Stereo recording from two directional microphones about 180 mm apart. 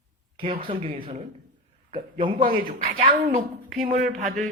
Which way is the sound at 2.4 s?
50° right (ahead or behind).